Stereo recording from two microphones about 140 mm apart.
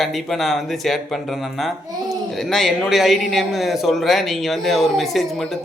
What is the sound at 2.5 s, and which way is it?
A man's voice, centre (ahead or behind).